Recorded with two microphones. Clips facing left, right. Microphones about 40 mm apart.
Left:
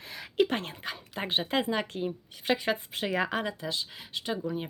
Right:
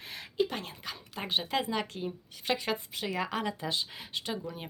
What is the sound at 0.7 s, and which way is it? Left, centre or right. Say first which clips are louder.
Speech: left 4 dB; left.